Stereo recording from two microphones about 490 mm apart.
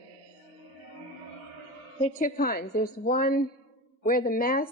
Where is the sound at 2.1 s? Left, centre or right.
Centre.